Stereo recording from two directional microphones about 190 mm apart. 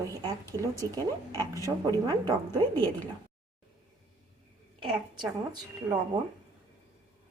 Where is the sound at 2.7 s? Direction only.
10° left (ahead or behind).